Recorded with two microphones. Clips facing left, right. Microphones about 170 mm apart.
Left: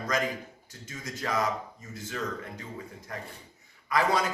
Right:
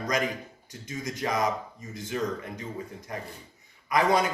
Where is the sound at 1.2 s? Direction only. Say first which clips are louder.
Right 2 dB; 20° right (ahead or behind).